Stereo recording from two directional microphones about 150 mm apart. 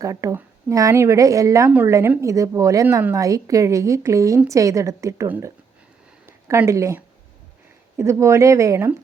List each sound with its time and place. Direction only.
0.0 s a woman's voice: 20° right (ahead or behind)